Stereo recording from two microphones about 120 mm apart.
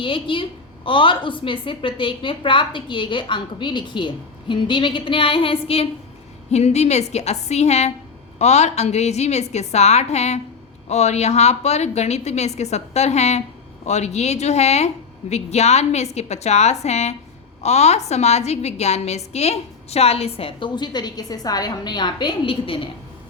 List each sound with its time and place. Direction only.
0.0 s a woman's voice: 45° left (ahead or behind)
6.5 s a woman's voice: 65° left (ahead or behind); by 22.9 s 50° left (ahead or behind)